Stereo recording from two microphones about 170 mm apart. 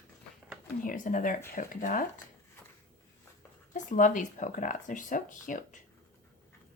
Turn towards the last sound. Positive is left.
turn(degrees=50)  # may be behind; listen again after turning